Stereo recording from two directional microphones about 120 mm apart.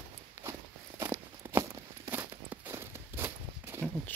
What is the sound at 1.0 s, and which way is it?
Walk, 20° right (ahead or behind).